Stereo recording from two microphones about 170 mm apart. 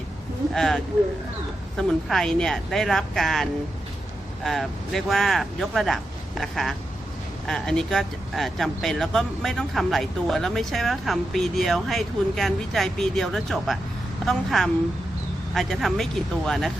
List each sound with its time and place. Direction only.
0.5 s speech: 5° left (ahead or behind)
2.0 s speech: 5° left (ahead or behind)